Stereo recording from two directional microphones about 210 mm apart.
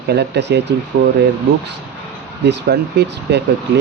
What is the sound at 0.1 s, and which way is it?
Speech, 55° right (ahead or behind).